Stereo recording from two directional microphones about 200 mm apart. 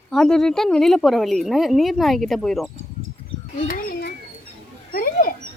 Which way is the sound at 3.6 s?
50° left (ahead or behind).